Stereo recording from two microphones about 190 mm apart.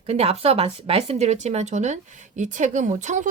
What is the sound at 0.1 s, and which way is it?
Speech, 35° right (ahead or behind).